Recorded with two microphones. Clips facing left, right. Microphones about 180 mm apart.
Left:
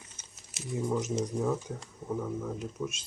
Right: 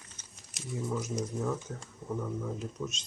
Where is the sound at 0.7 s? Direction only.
20° left (ahead or behind).